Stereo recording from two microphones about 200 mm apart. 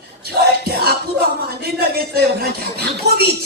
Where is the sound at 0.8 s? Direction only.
50° right (ahead or behind).